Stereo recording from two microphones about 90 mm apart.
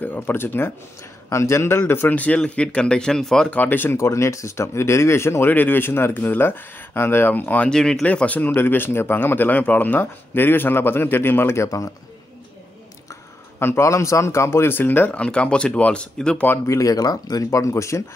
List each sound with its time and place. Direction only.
0.0 s speech: 20° left (ahead or behind); by 3.4 s 5° left (ahead or behind)
3.4 s speech: 20° left (ahead or behind); by 11.9 s 35° left (ahead or behind)
13.1 s speech: 30° left (ahead or behind); by 16.4 s 10° left (ahead or behind)
16.4 s speech: 35° left (ahead or behind)